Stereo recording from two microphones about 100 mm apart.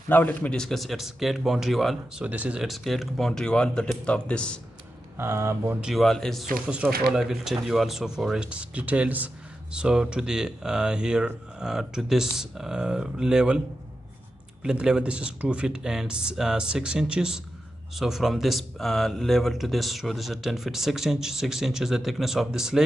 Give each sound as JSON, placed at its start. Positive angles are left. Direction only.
{"t": 0.1, "sound": "speech", "side_deg": 20}
{"t": 2.2, "sound": "speech", "side_deg": -15}
{"t": 2.6, "sound": "speech", "side_deg": 0}
{"t": 5.1, "sound": "speech", "side_deg": -25}
{"t": 5.8, "sound": "speech", "side_deg": 0}
{"t": 6.7, "sound": "speech", "side_deg": -10}
{"t": 14.6, "sound": "speech", "side_deg": -10}